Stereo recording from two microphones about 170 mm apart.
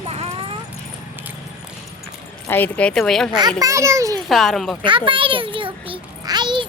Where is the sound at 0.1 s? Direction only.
35° right (ahead or behind).